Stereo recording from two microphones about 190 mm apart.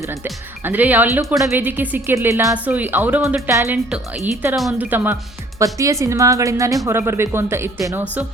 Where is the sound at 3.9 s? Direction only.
5° right (ahead or behind).